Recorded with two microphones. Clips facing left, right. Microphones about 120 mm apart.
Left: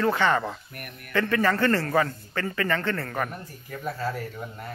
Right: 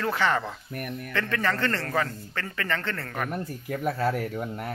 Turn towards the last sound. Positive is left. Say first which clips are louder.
# right 5 dB
turn(degrees=-65)  # may be behind; listen again after turning